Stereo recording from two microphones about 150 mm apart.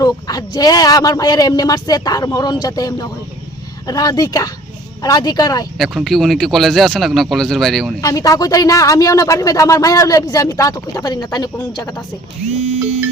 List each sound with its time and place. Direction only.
0.0 s speech: 25° left (ahead or behind)
5.7 s speech: centre (ahead or behind)
8.0 s speech: 20° left (ahead or behind)